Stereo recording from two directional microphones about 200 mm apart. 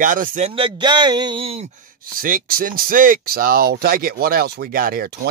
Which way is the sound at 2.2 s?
45° right (ahead or behind).